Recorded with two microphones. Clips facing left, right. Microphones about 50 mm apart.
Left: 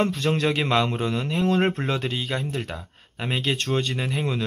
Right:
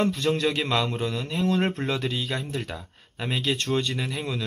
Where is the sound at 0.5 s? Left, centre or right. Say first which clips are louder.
Left 3 dB; left.